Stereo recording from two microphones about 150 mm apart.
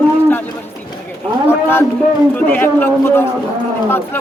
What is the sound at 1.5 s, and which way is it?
Speech, 15° left (ahead or behind).